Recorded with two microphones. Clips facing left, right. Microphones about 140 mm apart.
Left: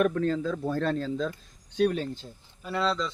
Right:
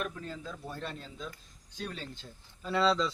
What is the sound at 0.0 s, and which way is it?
Speech, 70° left (ahead or behind).